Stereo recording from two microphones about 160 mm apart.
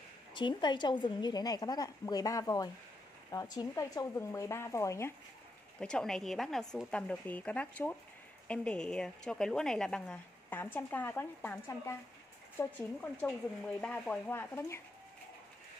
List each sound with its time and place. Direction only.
0.3 s a woman's voice: 30° left (ahead or behind)
5.8 s a woman's voice: 5° left (ahead or behind)